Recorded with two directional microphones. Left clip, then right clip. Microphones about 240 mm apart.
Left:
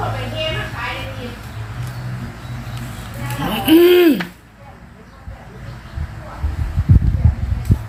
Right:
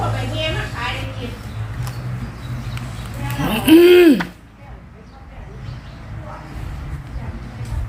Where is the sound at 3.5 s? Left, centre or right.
Centre.